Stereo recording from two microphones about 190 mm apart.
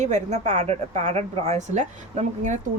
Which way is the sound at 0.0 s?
35° right (ahead or behind).